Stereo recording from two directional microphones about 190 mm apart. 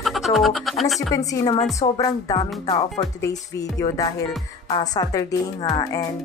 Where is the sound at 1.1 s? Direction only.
20° left (ahead or behind).